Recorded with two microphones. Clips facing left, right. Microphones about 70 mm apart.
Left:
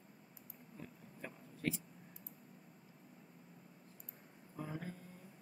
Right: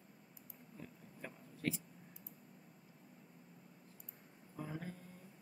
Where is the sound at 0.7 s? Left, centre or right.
Centre.